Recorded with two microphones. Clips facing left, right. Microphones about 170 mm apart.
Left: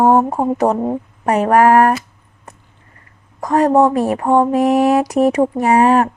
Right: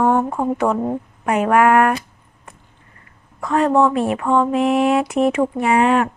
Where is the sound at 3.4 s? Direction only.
40° left (ahead or behind).